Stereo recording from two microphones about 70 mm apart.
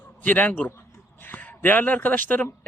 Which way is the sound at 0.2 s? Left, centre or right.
Left.